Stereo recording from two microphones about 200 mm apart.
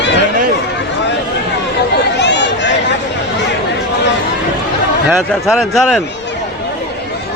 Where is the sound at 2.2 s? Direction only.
60° left (ahead or behind).